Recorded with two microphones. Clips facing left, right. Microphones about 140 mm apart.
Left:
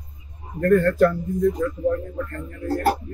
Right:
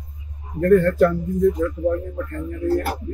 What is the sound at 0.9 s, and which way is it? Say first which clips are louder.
Speech: right 1 dB; 5° right (ahead or behind).